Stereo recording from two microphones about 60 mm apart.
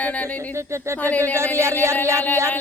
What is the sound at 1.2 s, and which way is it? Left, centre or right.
Speech, right.